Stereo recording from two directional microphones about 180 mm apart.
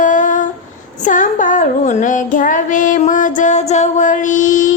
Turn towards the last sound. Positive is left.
turn(degrees=45)  # may be behind; listen again after turning